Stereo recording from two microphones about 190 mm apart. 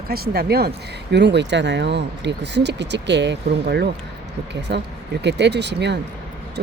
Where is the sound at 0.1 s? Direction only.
55° right (ahead or behind).